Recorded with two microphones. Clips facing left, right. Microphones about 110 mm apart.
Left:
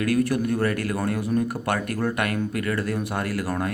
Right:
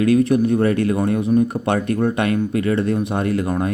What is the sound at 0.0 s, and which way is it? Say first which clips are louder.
Speech: right 7 dB; 25° right (ahead or behind).